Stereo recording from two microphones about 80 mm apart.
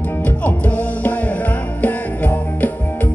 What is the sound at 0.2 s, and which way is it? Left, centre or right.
Music, centre.